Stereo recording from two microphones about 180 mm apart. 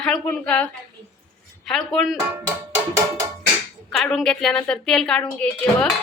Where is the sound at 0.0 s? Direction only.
5° left (ahead or behind).